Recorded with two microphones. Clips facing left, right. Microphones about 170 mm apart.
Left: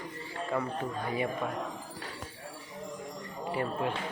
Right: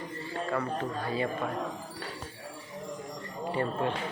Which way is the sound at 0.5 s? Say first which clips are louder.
Even; 15° left (ahead or behind).